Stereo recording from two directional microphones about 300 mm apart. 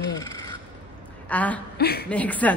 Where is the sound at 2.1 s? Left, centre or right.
Centre.